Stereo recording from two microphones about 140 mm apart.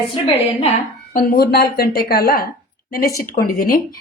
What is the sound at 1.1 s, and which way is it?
Speech, 90° left.